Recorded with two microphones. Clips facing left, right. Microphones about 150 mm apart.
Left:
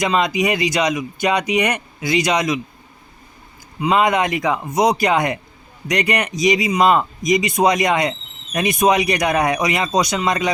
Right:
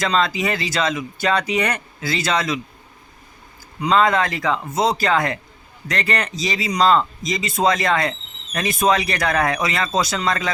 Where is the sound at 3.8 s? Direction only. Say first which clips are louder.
Left 1 dB; 10° left (ahead or behind).